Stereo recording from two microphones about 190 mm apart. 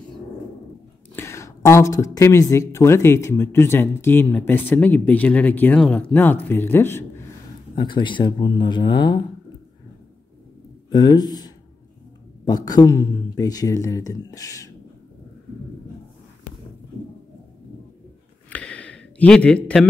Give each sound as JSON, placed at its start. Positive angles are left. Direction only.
{"t": 1.1, "sound": "speech", "side_deg": 15}
{"t": 7.7, "sound": "speech", "side_deg": 25}
{"t": 10.9, "sound": "speech", "side_deg": 20}
{"t": 18.5, "sound": "a sound", "side_deg": 5}